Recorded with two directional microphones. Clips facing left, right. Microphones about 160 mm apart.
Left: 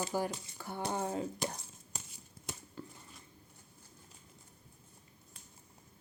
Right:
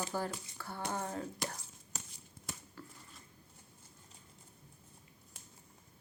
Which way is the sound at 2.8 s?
20° left (ahead or behind).